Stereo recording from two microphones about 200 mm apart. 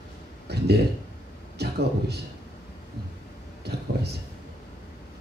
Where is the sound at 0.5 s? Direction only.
55° right (ahead or behind).